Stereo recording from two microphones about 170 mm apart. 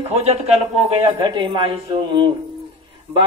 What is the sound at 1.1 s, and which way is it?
Speech, 25° right (ahead or behind).